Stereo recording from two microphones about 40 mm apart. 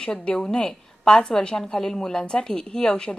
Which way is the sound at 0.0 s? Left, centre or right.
Centre.